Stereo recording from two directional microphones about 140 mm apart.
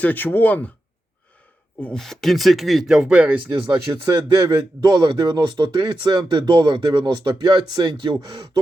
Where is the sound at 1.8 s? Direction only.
5° left (ahead or behind).